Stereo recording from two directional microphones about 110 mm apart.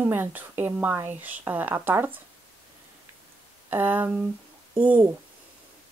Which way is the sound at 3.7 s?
20° right (ahead or behind).